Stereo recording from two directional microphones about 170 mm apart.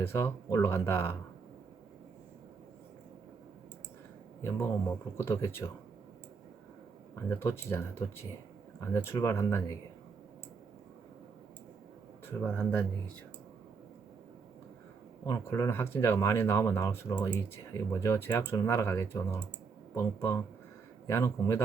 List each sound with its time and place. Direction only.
0.0 s speech: 15° left (ahead or behind)
4.4 s speech: 15° left (ahead or behind)
7.2 s speech: 15° left (ahead or behind)
12.2 s speech: 5° left (ahead or behind)
15.3 s speech: 15° left (ahead or behind)